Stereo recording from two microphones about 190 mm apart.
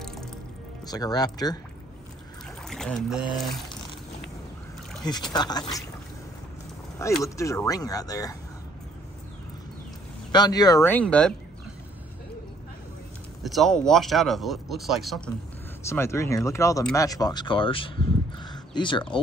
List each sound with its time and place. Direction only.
0.0 s music: centre (ahead or behind)
0.8 s speech: 20° left (ahead or behind)
2.6 s speech: 5° left (ahead or behind)
5.0 s speech: 20° left (ahead or behind)
7.0 s speech: 15° left (ahead or behind)
10.3 s speech: 20° left (ahead or behind); by 11.3 s 5° left (ahead or behind)
13.4 s speech: centre (ahead or behind)
15.8 s speech: 15° left (ahead or behind)